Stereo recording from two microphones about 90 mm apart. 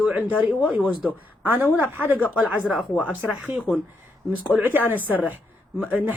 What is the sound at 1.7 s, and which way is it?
Speech, 20° right (ahead or behind).